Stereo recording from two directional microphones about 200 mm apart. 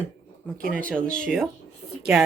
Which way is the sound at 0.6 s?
45° right (ahead or behind).